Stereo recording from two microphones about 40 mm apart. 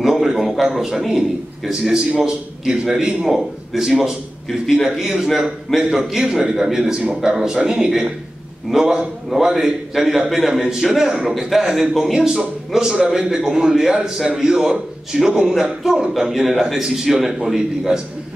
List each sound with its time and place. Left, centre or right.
0.0 s a sound: centre
0.6 s a man's voice: centre
12.3 s a man's voice: centre